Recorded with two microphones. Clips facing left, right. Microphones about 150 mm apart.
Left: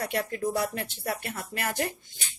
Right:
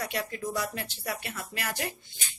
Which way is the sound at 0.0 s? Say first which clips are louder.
Left 4 dB; 55° left (ahead or behind).